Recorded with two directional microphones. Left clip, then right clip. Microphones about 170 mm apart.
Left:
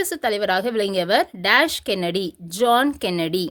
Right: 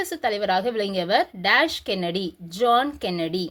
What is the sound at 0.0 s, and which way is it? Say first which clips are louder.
A woman's voice: left 3 dB; 40° left (ahead or behind).